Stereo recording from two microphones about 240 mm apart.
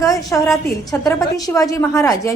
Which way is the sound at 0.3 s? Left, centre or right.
Centre.